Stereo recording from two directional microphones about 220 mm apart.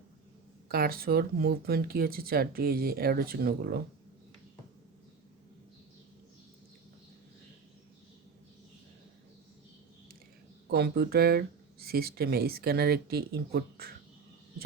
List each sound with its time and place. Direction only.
0.7 s speech: 45° right (ahead or behind)
10.7 s speech: 45° right (ahead or behind)